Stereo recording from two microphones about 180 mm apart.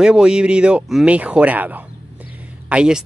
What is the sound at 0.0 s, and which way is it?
Speech, 5° right (ahead or behind).